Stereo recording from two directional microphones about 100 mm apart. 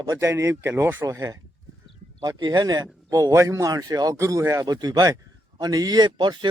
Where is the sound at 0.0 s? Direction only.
30° right (ahead or behind).